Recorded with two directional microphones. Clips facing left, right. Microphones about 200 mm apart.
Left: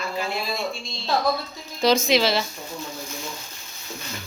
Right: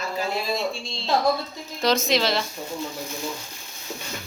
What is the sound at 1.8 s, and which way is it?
Speech, centre (ahead or behind).